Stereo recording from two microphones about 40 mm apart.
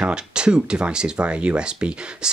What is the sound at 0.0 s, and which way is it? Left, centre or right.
Speech, right.